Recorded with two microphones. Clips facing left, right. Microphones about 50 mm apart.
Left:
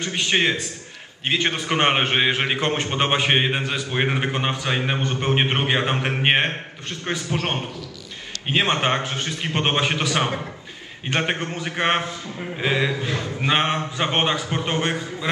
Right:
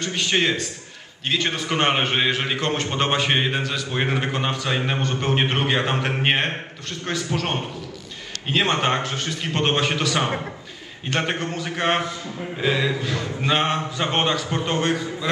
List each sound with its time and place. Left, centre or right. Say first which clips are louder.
0.0 s a man's voice: left 1 dB; centre
8.8 s a man's voice: even; left